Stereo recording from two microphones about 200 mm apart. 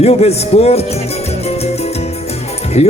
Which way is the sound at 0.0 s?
30° left (ahead or behind).